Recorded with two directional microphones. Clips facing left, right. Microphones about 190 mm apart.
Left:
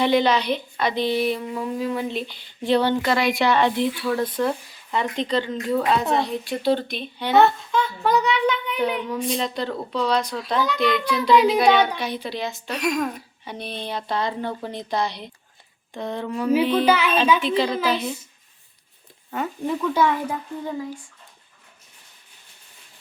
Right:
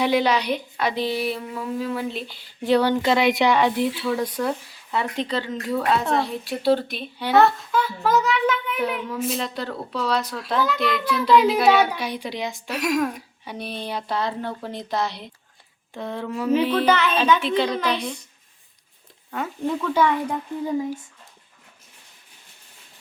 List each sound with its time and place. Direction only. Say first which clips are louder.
0.0 s a woman's voice: left 1 dB; 10° right (ahead or behind)
3.0 s a woman's voice: right 2 dB; 20° right (ahead or behind); by 16.5 s 5° right (ahead or behind)
16.8 s a woman's voice: left 1 dB; 10° left (ahead or behind)
19.3 s a woman's voice: even; 5° left (ahead or behind)
20.7 s speech: right 5 dB; 10° right (ahead or behind)